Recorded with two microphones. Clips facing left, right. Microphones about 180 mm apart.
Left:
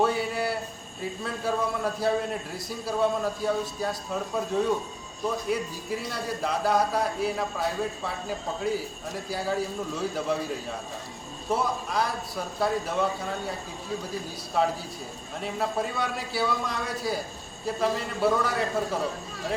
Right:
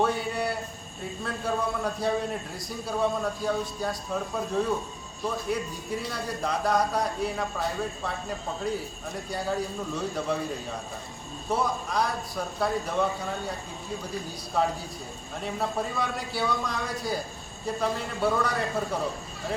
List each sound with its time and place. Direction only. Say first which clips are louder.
0.0 s a sound: left 1 dB; centre (ahead or behind)
1.2 s a man's voice: even; centre (ahead or behind)
14.5 s a man's voice: left 1 dB; centre (ahead or behind)